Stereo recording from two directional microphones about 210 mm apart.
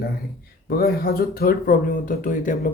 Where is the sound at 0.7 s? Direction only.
45° left (ahead or behind).